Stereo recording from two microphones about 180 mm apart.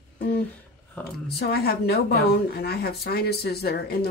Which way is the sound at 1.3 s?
60° left (ahead or behind).